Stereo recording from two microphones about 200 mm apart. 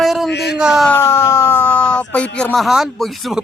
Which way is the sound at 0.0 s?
Centre (ahead or behind).